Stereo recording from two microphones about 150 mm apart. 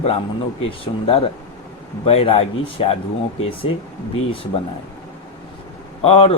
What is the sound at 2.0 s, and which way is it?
Speech, 40° left (ahead or behind).